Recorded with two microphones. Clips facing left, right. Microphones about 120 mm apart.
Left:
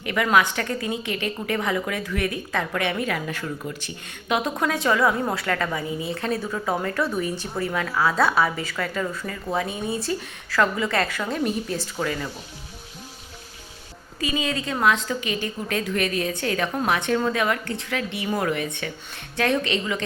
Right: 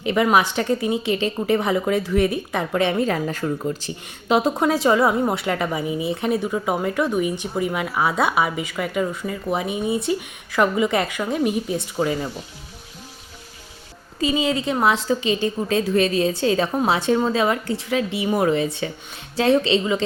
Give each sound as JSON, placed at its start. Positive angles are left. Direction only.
{"t": 0.0, "sound": "a woman's voice", "side_deg": -20}
{"t": 2.9, "sound": "a woman's voice", "side_deg": -30}
{"t": 14.2, "sound": "a woman's voice", "side_deg": -25}